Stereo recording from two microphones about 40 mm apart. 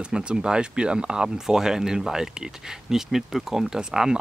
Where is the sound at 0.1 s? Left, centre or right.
Right.